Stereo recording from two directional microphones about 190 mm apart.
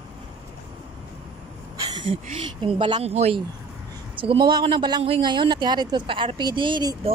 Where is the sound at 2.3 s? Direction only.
30° right (ahead or behind).